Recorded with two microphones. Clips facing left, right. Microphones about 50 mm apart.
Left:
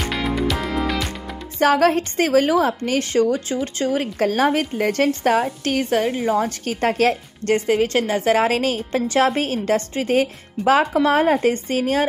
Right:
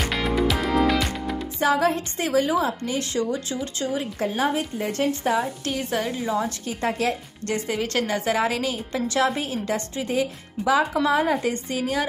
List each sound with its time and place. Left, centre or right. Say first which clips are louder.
0.1 s music: left 1 dB; centre
1.6 s a woman's voice: left 5 dB; left
3.0 s a woman's voice: left 9 dB; left
3.8 s a woman's voice: left 6 dB; left
5.4 s a woman's voice: left 5 dB; left
6.3 s a woman's voice: left 5 dB; left
7.4 s a woman's voice: left 8 dB; left
8.3 s a woman's voice: left 8 dB; left
9.2 s a woman's voice: left 3 dB; left